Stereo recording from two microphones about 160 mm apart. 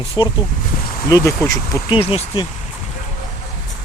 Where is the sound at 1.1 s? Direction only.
20° left (ahead or behind).